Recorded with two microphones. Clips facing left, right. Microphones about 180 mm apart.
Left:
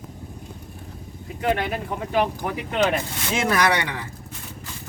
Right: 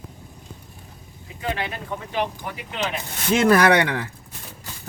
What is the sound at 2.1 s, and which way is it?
Speech, 50° left (ahead or behind).